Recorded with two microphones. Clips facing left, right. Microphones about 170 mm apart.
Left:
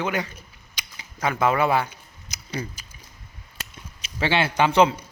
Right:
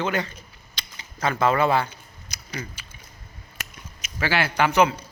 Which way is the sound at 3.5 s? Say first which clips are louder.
Even; 30° left (ahead or behind).